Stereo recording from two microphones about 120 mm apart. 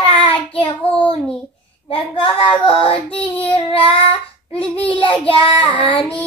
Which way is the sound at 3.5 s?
50° left (ahead or behind).